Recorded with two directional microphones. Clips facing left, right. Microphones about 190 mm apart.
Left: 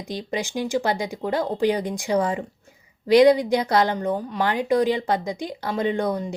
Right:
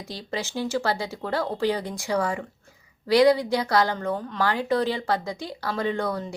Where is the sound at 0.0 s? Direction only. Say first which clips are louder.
Left 4 dB; 20° left (ahead or behind).